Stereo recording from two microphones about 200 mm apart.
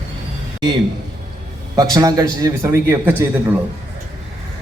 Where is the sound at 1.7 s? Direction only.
20° right (ahead or behind).